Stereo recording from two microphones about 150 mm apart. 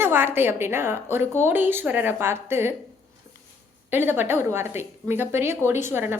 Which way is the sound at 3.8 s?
15° right (ahead or behind).